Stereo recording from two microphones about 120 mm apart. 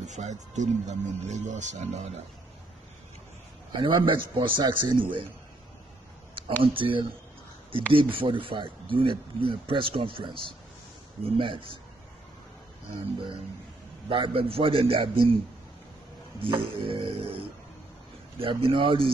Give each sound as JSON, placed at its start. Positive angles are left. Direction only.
{"t": 0.0, "sound": "speech", "side_deg": -80}
{"t": 3.7, "sound": "speech", "side_deg": -40}
{"t": 6.6, "sound": "speech", "side_deg": -45}
{"t": 12.9, "sound": "speech", "side_deg": -45}
{"t": 16.4, "sound": "speech", "side_deg": -45}
{"t": 18.4, "sound": "speech", "side_deg": -50}